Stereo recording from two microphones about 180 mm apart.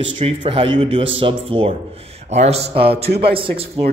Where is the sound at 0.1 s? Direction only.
30° right (ahead or behind).